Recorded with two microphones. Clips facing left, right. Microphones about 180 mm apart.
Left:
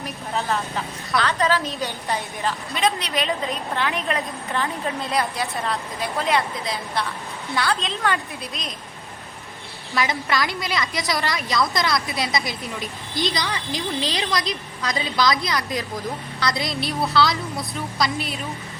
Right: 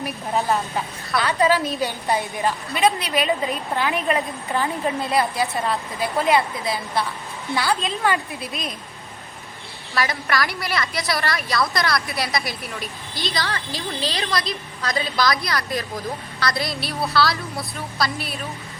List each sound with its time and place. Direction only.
0.0 s a woman's voice: 15° right (ahead or behind)
9.9 s a woman's voice: 20° left (ahead or behind)